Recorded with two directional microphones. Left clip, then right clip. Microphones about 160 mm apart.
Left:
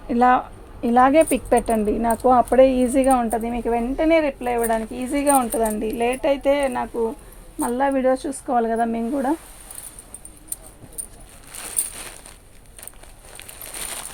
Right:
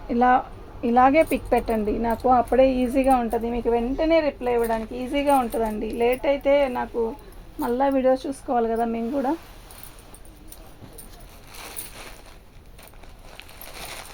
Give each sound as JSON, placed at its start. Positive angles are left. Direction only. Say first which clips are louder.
{"t": 0.1, "sound": "a woman's voice", "louder": "left 2 dB", "side_deg": 40}
{"t": 5.5, "sound": "speech", "louder": "left 3 dB", "side_deg": 90}
{"t": 7.6, "sound": "speech", "louder": "left 1 dB", "side_deg": 55}